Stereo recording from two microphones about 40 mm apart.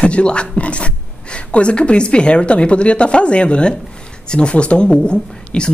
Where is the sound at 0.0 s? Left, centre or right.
Left.